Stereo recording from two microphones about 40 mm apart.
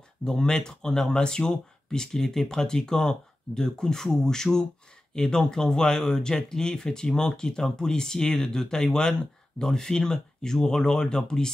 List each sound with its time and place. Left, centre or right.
0.2 s speech: centre